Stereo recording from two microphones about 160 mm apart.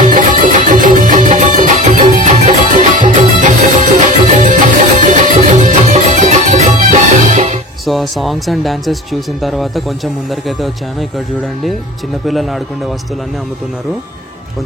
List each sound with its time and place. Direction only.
0.0 s music: 55° right (ahead or behind)
7.8 s speech: centre (ahead or behind)
12.3 s speech: centre (ahead or behind)